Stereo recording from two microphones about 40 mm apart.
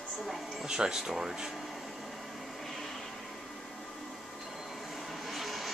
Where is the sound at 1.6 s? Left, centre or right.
Centre.